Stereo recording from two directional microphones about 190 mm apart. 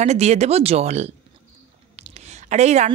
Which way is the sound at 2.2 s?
35° right (ahead or behind).